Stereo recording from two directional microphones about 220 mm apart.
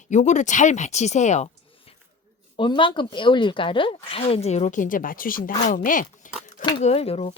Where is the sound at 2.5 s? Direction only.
20° left (ahead or behind); by 6.3 s 35° left (ahead or behind).